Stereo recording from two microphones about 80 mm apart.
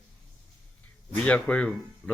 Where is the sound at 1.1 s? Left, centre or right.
Centre.